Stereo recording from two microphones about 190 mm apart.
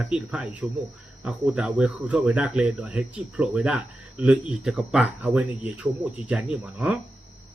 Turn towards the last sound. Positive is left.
turn(degrees=-5)  # may be behind; listen again after turning